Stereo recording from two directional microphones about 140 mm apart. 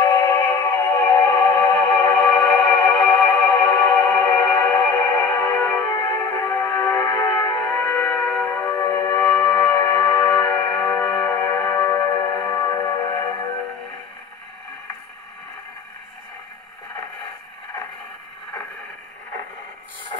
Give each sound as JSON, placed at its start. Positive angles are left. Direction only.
{"t": 0.0, "sound": "music", "side_deg": 25}